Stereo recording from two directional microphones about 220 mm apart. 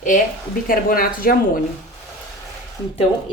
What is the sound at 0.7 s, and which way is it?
Speech, 40° left (ahead or behind).